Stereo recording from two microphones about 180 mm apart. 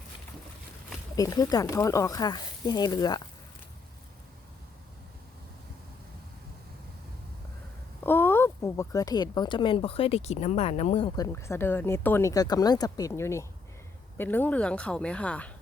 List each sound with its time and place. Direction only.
1.1 s speech: 20° left (ahead or behind)
8.0 s speech: 10° left (ahead or behind); by 11.1 s 35° left (ahead or behind)
11.2 s speech: 15° left (ahead or behind)